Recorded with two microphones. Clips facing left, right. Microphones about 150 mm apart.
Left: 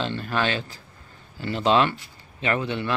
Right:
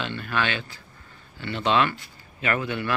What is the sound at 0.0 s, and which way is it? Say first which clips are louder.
Speech: left 2 dB; 35° left (ahead or behind).